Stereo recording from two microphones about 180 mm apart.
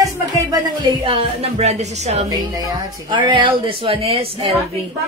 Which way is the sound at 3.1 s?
25° right (ahead or behind).